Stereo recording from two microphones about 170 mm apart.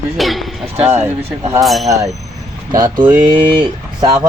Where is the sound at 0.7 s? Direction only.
15° right (ahead or behind).